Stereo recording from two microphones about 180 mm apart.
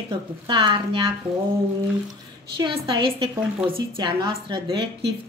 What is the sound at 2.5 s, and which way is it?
Speech, 30° right (ahead or behind).